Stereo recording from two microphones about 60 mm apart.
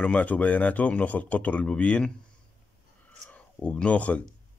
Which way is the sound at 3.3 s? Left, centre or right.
Centre.